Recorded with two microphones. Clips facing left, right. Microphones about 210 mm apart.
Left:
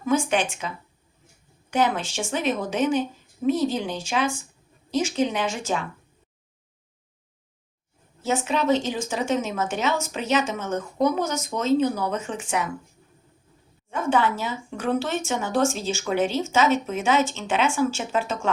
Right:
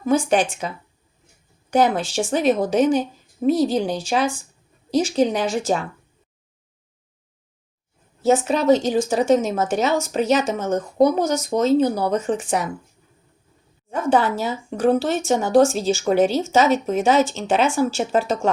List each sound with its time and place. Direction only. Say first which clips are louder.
0.0 s speech: right 4 dB; 35° right (ahead or behind)
1.7 s speech: right 5 dB; 35° right (ahead or behind)
8.2 s speech: right 6 dB; 40° right (ahead or behind)
13.9 s speech: right 4 dB; 35° right (ahead or behind)